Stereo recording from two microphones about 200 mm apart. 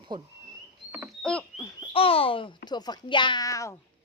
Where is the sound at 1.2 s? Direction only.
5° left (ahead or behind).